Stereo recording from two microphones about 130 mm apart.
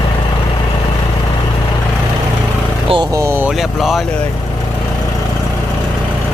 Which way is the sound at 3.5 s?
Centre (ahead or behind).